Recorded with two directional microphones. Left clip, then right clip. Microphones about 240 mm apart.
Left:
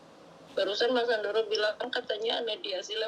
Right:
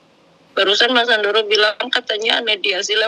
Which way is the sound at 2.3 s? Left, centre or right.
Right.